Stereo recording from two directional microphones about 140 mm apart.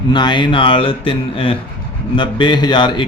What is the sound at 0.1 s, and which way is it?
Speech, 35° left (ahead or behind).